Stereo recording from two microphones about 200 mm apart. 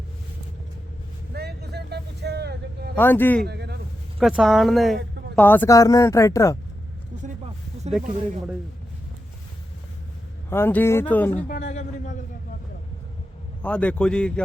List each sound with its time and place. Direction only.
1.3 s a sound: 55° right (ahead or behind)
2.9 s speech: 10° left (ahead or behind)
3.4 s a sound: 55° right (ahead or behind)
4.2 s a man's voice: centre (ahead or behind); by 6.6 s 15° left (ahead or behind)
10.5 s speech: 10° left (ahead or behind)
11.4 s speech: 50° left (ahead or behind)
11.7 s a man's voice: 35° left (ahead or behind)
13.6 s a man's voice: 5° left (ahead or behind)